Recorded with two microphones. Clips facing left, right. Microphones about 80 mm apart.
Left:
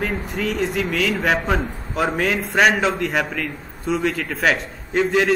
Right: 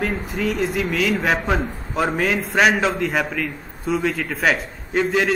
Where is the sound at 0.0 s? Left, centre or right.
Centre.